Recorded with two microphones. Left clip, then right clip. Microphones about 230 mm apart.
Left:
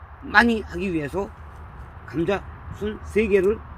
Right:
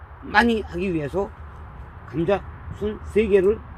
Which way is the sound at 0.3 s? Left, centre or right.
Centre.